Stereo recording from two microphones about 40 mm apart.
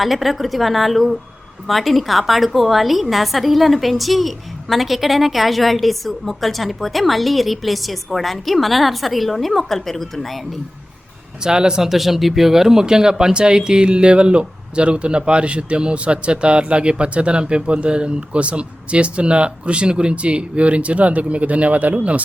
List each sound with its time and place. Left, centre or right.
0.0 s a woman's voice: centre
11.4 s speech: centre
11.8 s speech: centre; by 22.2 s right